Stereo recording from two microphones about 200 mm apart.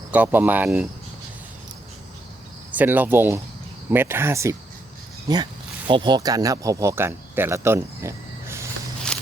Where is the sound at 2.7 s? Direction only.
10° right (ahead or behind).